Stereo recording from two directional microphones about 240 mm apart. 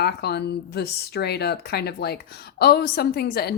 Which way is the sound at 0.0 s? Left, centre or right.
Left.